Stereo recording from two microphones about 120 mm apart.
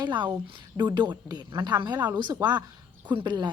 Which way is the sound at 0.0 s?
40° right (ahead or behind).